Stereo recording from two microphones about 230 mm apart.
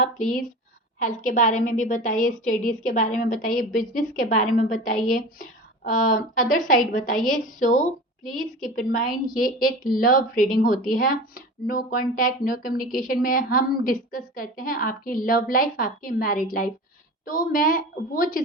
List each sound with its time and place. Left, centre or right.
0.0 s a woman's voice: left
8.2 s a woman's voice: centre
8.7 s a woman's voice: left